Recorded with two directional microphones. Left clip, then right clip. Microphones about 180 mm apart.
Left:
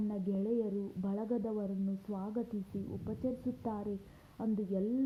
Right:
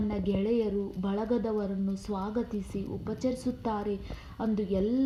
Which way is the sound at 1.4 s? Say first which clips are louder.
Right 7 dB; 30° right (ahead or behind).